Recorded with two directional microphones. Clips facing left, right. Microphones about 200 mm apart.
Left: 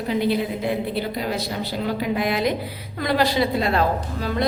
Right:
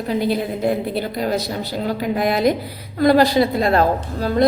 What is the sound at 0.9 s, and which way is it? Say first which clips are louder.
A woman's voice: right 4 dB; 40° right (ahead or behind).